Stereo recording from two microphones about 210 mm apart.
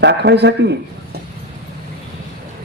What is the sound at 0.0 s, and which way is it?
Speech, 55° right (ahead or behind).